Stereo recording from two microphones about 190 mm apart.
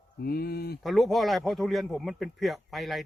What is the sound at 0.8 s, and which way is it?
Speech, centre (ahead or behind).